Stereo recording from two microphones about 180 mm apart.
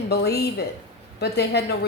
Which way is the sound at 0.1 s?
65° left (ahead or behind).